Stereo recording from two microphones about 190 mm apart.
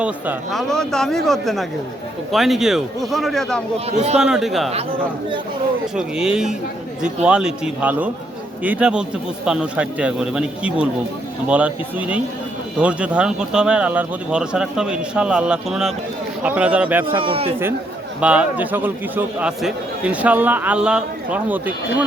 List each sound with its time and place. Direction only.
0.0 s speech: 5° right (ahead or behind)
3.8 s a man's voice: 35° right (ahead or behind)
4.2 s speech: 5° right (ahead or behind)
6.0 s a man's voice: 5° right (ahead or behind)
17.2 s a man's voice: 30° right (ahead or behind)
18.2 s a man's voice: 5° right (ahead or behind)